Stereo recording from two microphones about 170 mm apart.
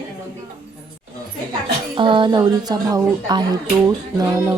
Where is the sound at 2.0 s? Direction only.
30° right (ahead or behind).